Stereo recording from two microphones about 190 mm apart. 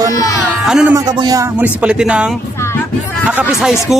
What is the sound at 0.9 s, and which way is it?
Speech, 20° right (ahead or behind).